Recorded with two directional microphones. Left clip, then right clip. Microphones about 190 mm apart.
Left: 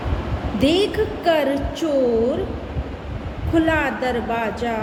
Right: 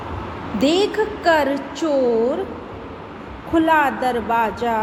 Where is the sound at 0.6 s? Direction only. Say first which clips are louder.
Right 1 dB; 5° right (ahead or behind).